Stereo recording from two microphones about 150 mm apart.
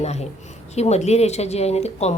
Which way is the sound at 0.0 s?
45° left (ahead or behind).